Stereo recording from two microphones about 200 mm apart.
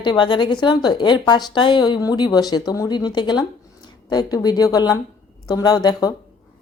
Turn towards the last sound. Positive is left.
turn(degrees=20)  # may be behind; listen again after turning